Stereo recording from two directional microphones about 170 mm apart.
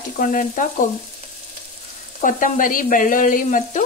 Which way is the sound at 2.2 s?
50° left (ahead or behind).